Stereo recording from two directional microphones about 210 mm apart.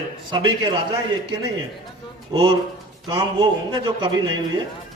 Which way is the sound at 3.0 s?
20° right (ahead or behind).